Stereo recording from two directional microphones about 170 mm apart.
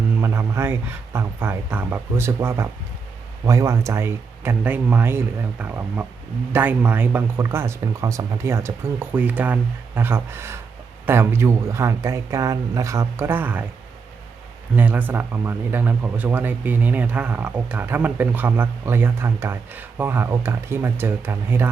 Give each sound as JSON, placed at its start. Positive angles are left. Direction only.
{"t": 0.2, "sound": "speech", "side_deg": -15}
{"t": 14.8, "sound": "speech", "side_deg": -10}